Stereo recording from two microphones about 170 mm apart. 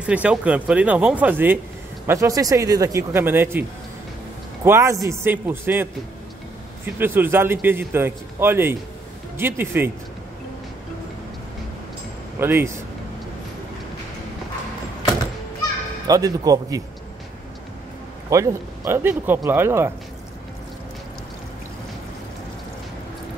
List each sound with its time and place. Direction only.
0.0 s a man's voice: 5° right (ahead or behind)
4.6 s a man's voice: 15° right (ahead or behind)
7.0 s a man's voice: 15° right (ahead or behind)
12.4 s a man's voice: 15° right (ahead or behind)
16.1 s speech: 20° right (ahead or behind)
18.3 s a man's voice: 20° right (ahead or behind)